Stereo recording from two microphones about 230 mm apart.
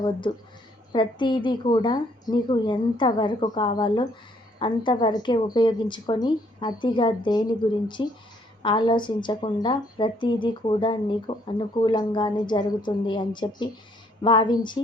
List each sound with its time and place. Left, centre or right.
0.3 s a woman's voice: centre